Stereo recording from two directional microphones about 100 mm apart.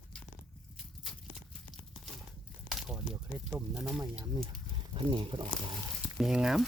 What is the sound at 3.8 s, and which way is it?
Speech, 5° right (ahead or behind).